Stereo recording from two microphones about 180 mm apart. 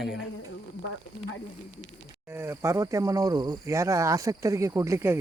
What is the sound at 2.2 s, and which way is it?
Speech, 15° right (ahead or behind).